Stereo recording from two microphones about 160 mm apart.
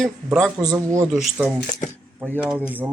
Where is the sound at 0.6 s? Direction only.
20° right (ahead or behind).